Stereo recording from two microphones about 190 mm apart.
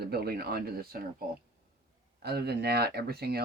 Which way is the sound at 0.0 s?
55° right (ahead or behind).